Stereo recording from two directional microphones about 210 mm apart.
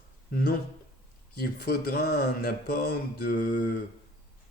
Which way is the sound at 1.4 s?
45° left (ahead or behind).